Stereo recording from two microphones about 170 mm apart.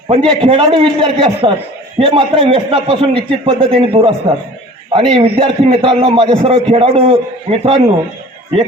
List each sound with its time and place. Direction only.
0.3 s a man's voice: 30° right (ahead or behind)